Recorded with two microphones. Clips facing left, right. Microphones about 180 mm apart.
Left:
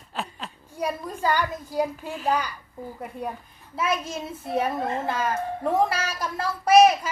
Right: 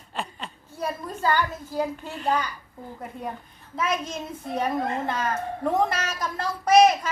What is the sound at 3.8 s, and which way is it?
Speech, 10° left (ahead or behind).